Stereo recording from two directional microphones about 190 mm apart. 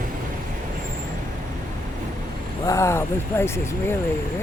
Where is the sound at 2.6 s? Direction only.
15° left (ahead or behind).